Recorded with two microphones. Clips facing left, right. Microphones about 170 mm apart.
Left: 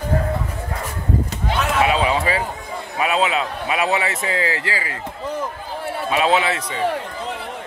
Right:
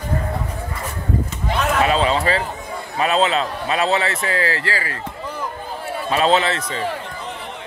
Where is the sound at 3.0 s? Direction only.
10° left (ahead or behind).